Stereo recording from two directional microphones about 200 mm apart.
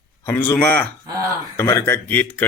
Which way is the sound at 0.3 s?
10° left (ahead or behind).